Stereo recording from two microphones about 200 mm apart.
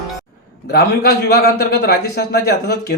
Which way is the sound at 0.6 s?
55° left (ahead or behind).